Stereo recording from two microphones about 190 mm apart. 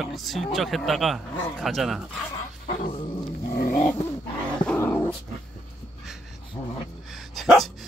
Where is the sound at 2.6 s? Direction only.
40° left (ahead or behind).